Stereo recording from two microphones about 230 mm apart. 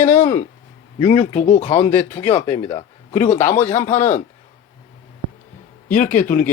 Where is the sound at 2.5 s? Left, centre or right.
Left.